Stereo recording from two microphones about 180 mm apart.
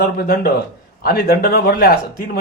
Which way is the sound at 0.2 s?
60° left (ahead or behind).